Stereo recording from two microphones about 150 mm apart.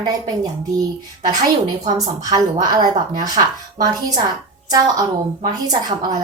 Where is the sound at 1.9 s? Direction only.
25° right (ahead or behind).